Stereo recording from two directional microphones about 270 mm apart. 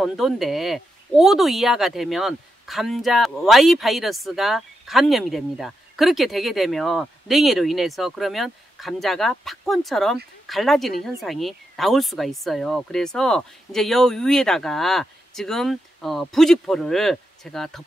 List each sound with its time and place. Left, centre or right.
0.0 s speech: centre